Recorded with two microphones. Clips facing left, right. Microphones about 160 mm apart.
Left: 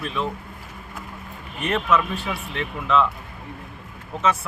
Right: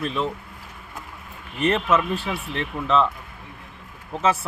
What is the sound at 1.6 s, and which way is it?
Speech, 35° right (ahead or behind).